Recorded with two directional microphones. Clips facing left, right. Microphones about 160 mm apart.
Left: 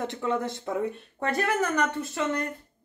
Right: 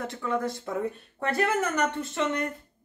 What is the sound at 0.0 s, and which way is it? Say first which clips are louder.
Speech: left 1 dB; 20° left (ahead or behind).